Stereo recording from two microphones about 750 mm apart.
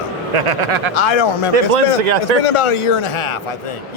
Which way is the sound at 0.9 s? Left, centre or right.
Left.